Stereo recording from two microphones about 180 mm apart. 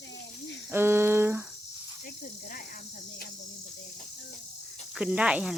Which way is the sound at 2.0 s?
55° left (ahead or behind).